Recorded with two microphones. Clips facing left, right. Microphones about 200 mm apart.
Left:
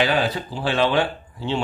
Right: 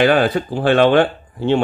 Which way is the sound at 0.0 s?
55° right (ahead or behind).